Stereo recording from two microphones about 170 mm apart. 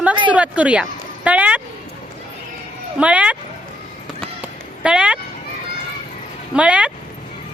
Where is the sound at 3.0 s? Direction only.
5° right (ahead or behind).